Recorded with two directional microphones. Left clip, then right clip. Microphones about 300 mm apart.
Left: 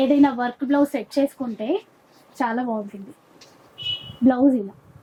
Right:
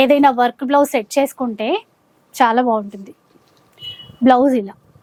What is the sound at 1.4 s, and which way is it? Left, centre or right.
Speech, centre.